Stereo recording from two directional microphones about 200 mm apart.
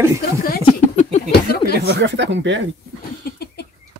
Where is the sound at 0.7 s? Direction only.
35° left (ahead or behind).